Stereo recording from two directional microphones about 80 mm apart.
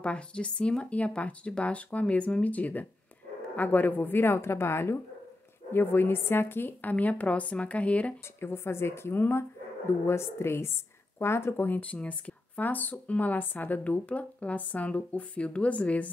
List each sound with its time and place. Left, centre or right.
0.0 s speech: centre
8.4 s speech: left